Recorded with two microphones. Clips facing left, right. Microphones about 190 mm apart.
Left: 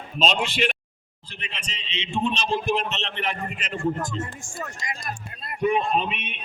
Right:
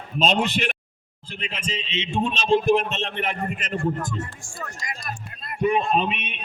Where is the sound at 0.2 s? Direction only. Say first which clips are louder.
Right 2 dB; 45° right (ahead or behind).